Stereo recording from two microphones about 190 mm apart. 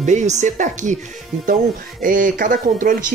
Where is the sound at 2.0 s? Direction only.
45° right (ahead or behind).